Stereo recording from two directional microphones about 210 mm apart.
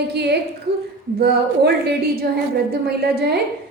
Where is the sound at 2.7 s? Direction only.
50° right (ahead or behind).